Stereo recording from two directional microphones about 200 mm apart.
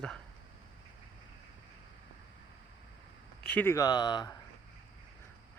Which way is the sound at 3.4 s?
10° left (ahead or behind).